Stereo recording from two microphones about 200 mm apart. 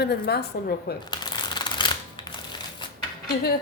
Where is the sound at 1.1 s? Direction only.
20° left (ahead or behind).